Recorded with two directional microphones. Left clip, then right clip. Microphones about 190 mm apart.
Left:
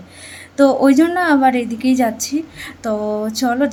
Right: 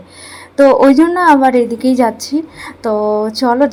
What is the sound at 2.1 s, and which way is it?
Speech, 15° left (ahead or behind).